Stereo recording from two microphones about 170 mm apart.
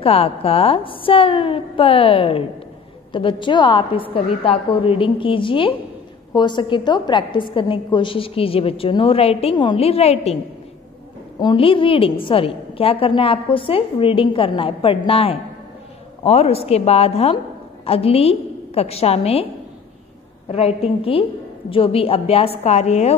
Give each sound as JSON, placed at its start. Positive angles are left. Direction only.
{"t": 0.0, "sound": "a woman's voice", "side_deg": 35}
{"t": 11.4, "sound": "a woman's voice", "side_deg": 30}
{"t": 20.4, "sound": "a woman's voice", "side_deg": 35}